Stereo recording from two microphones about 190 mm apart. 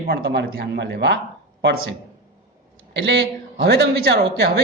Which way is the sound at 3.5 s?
60° right (ahead or behind).